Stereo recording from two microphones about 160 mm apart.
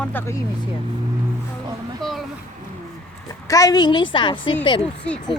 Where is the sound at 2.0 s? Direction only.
Centre (ahead or behind).